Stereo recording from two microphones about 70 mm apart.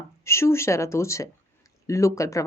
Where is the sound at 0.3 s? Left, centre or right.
Left.